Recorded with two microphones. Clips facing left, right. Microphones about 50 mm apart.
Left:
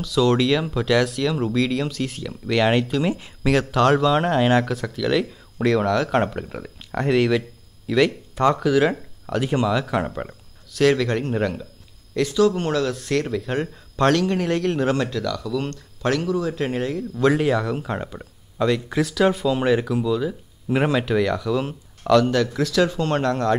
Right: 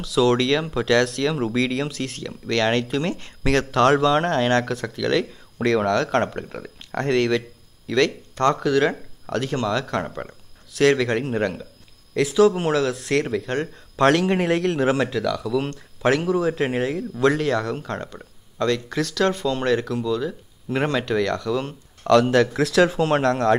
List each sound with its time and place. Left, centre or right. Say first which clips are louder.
0.0 s speech: even; centre
14.2 s speech: right 1 dB; centre
14.5 s speech: right 1 dB; centre
16.3 s speech: right 2 dB; right
16.5 s speech: right 1 dB; centre
17.4 s speech: left 2 dB; centre
22.2 s speech: right 2 dB; centre